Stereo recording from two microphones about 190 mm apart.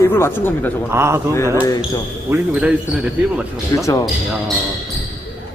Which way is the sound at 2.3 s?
5° right (ahead or behind).